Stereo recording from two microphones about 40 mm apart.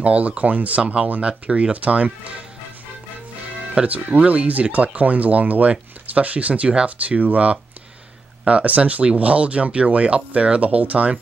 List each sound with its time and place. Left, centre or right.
0.0 s speech: right
1.2 s speech: right
3.7 s speech: right